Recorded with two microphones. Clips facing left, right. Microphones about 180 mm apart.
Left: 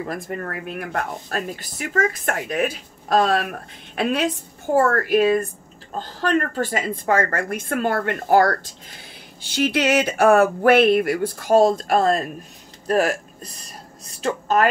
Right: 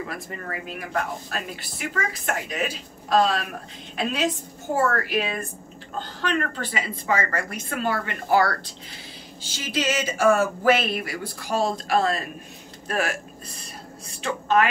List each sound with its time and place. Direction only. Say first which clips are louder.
0.1 s speech: left 5 dB; 50° left (ahead or behind)
3.9 s a sound: left 4 dB; 60° left (ahead or behind)
4.7 s speech: left 6 dB; 50° left (ahead or behind)
9.4 s a sound: left 7 dB; 60° left (ahead or behind); by 12.3 s 45° left (ahead or behind)
12.8 s a woman's voice: left 7 dB; 40° left (ahead or behind)
14.2 s a woman's voice: left 2 dB; 40° left (ahead or behind)